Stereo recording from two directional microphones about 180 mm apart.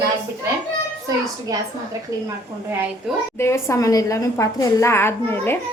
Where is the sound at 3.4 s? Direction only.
15° left (ahead or behind).